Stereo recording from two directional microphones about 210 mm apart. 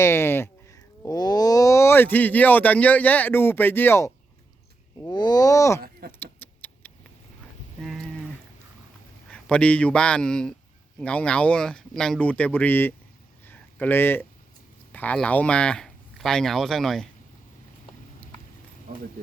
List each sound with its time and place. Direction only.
0.0 s speech: 10° left (ahead or behind)
6.0 s speech: 45° right (ahead or behind)
6.4 s a sound: 10° left (ahead or behind)
9.3 s speech: 5° left (ahead or behind)
13.4 s a sound: 10° left (ahead or behind)
14.9 s speech: 5° left (ahead or behind)